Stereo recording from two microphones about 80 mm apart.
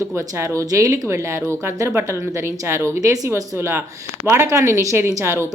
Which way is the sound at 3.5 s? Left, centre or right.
Right.